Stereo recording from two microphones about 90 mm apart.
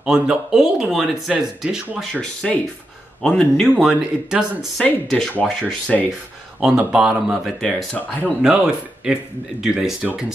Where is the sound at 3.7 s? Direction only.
5° right (ahead or behind).